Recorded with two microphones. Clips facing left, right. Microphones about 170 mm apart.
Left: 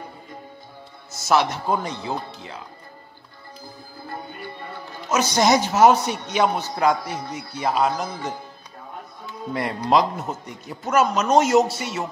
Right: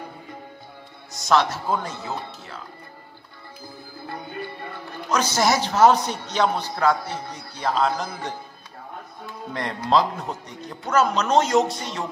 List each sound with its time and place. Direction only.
1.2 s a man's voice: 10° left (ahead or behind)
5.3 s a man's voice: 15° left (ahead or behind)
9.5 s a man's voice: 10° left (ahead or behind)